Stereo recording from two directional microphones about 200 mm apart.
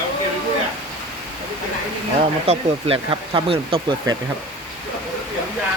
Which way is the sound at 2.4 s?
30° right (ahead or behind).